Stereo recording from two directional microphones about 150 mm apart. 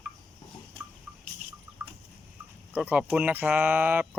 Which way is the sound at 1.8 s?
5° right (ahead or behind).